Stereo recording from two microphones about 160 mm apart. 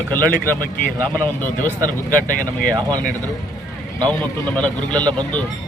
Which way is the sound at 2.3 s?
55° left (ahead or behind).